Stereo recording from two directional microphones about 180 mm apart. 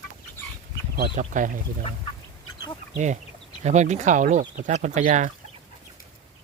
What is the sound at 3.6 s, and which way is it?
Speech, 40° right (ahead or behind).